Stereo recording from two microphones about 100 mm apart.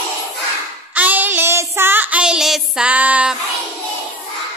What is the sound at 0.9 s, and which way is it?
Child singing, 15° right (ahead or behind).